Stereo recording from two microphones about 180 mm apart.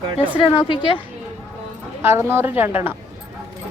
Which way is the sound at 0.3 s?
30° left (ahead or behind).